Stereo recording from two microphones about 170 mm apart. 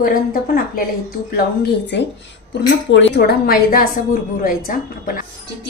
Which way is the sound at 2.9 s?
90° left.